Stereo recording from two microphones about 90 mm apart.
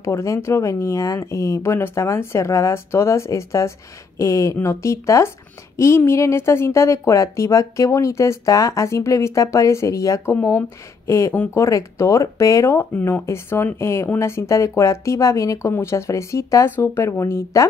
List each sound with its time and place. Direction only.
0.0 s speech: 35° left (ahead or behind)